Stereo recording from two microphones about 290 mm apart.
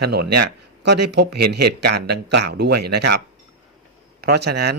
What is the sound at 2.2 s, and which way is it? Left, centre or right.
Speech, right.